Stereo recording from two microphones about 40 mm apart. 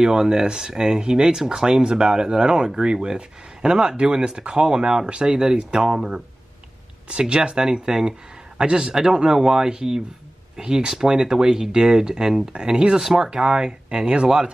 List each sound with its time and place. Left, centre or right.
0.0 s speech: centre
7.1 s speech: right